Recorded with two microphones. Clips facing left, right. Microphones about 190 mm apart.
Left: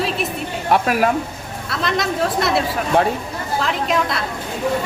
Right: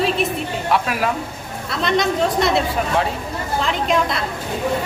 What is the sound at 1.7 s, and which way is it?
Speech, centre (ahead or behind).